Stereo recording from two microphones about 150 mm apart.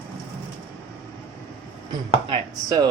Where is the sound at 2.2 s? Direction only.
35° right (ahead or behind).